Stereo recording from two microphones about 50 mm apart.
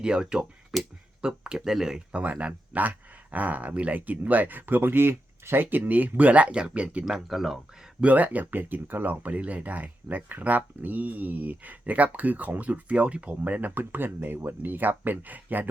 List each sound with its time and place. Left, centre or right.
0.0 s speech: centre
1.2 s speech: centre
2.1 s speech: right
7.0 s speech: centre
8.0 s speech: right